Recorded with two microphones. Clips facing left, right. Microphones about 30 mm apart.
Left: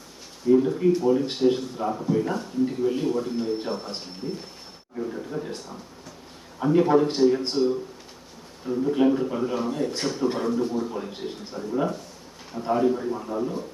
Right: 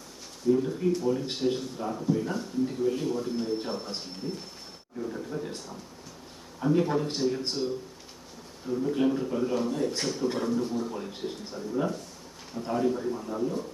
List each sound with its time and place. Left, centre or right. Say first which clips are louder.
0.4 s speech: left 6 dB; left
2.3 s speech: left 4 dB; centre